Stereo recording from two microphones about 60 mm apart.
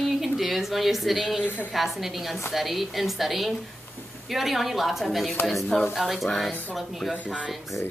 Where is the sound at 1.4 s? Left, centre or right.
Left.